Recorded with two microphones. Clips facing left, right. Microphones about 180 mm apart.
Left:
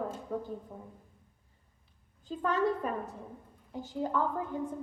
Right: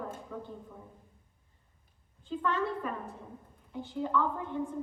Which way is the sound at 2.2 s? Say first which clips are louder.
Left 2 dB; 40° left (ahead or behind).